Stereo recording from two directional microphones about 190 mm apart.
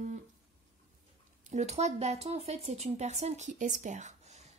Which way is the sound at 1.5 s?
35° right (ahead or behind).